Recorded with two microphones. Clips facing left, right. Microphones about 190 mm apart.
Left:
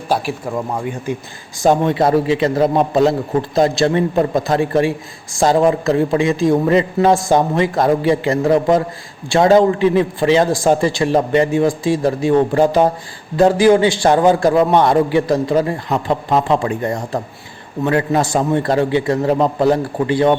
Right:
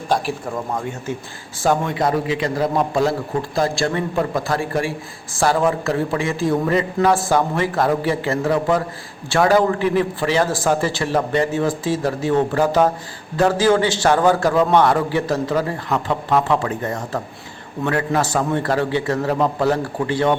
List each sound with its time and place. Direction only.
1.6 s a man's voice: 20° left (ahead or behind)